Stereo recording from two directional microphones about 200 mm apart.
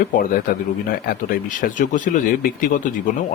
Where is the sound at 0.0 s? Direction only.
45° left (ahead or behind).